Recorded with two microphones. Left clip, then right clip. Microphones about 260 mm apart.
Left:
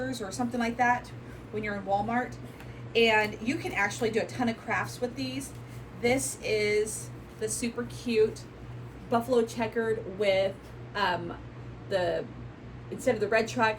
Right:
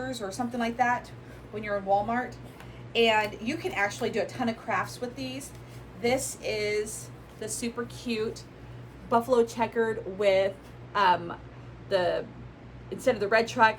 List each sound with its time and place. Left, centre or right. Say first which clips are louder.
0.1 s a woman's voice: even; centre